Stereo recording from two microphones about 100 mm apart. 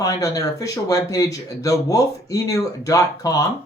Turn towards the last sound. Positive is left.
turn(degrees=35)  # may be behind; listen again after turning